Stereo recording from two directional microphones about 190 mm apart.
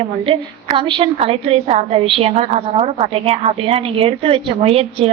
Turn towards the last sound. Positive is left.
turn(degrees=-30)  # may be behind; listen again after turning